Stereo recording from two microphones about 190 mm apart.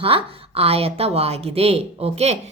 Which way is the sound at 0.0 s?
30° right (ahead or behind).